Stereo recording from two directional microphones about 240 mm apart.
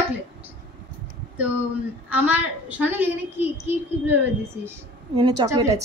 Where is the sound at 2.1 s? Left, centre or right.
Centre.